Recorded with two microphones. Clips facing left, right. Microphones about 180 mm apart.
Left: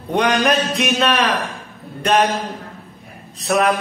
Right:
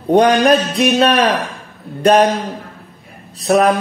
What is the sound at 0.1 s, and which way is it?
Speech, 35° right (ahead or behind).